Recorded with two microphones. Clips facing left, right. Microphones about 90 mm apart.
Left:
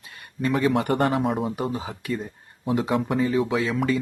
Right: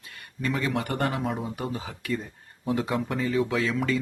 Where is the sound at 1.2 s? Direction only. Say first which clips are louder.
Left 5 dB; centre (ahead or behind).